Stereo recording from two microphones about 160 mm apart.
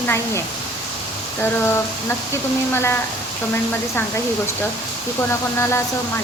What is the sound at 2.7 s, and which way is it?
Speech, 15° left (ahead or behind).